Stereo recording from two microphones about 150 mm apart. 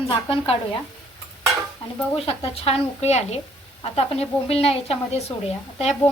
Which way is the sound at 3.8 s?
40° left (ahead or behind).